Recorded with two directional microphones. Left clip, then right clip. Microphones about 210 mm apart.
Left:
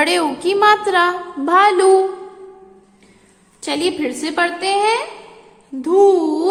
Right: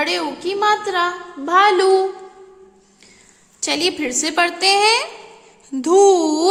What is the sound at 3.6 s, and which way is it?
A woman's voice, 10° right (ahead or behind).